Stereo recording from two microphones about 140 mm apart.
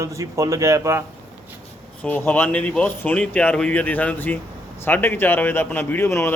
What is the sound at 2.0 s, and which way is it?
A man's voice, 10° left (ahead or behind).